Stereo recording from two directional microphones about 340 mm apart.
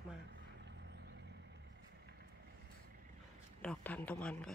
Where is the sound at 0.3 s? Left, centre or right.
Right.